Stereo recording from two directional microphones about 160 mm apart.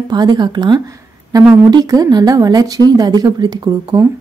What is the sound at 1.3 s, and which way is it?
Speech, 15° right (ahead or behind).